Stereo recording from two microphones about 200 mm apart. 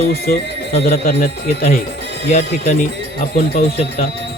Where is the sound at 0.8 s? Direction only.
50° left (ahead or behind).